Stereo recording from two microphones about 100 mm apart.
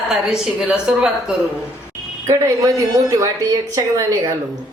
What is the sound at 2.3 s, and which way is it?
A woman's voice, 35° right (ahead or behind).